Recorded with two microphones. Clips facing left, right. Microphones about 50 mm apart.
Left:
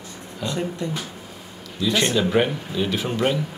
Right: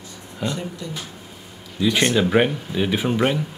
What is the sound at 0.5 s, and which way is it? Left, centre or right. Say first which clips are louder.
Speech: left 4 dB; left.